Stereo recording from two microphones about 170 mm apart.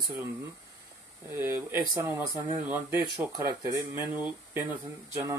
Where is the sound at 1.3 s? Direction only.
15° right (ahead or behind).